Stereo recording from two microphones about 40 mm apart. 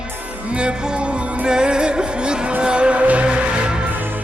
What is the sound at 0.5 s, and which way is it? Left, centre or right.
Music, right.